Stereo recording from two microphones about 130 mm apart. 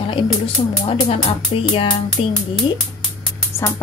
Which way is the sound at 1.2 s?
45° left (ahead or behind).